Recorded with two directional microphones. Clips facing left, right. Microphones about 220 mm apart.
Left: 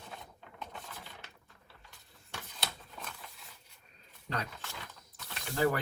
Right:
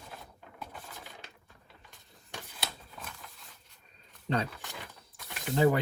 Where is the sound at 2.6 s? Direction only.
Centre (ahead or behind).